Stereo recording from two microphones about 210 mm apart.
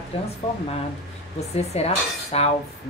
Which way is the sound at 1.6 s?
30° left (ahead or behind).